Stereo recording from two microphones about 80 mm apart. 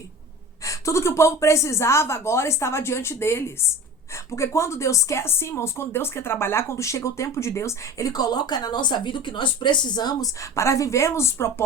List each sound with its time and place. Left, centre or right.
0.6 s speech: left
10.4 s speech: left